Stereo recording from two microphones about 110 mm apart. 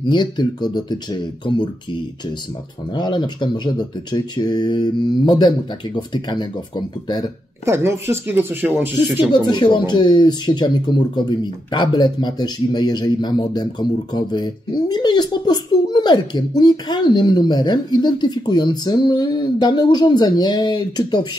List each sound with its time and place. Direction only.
0.1 s speech: 40° left (ahead or behind)
2.9 s speech: 45° left (ahead or behind)
7.6 s speech: 25° right (ahead or behind)
9.2 s speech: 40° left (ahead or behind)